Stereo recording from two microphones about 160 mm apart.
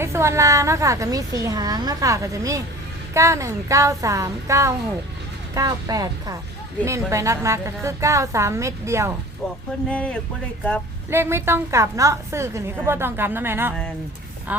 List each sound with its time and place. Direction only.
0.0 s a woman's voice: 15° right (ahead or behind)
9.9 s speech: 5° left (ahead or behind)
11.1 s a woman's voice: 15° right (ahead or behind)